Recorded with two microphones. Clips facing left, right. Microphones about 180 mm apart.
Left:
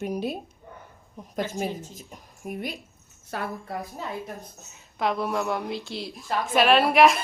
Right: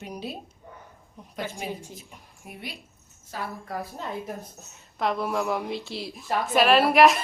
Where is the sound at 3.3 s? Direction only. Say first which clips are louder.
Left 3 dB; 60° left (ahead or behind).